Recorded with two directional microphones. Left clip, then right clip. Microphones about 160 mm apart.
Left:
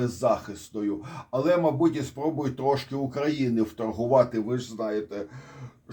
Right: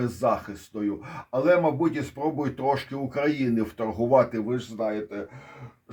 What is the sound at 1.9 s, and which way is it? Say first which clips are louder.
Speech: right 1 dB; 30° right (ahead or behind).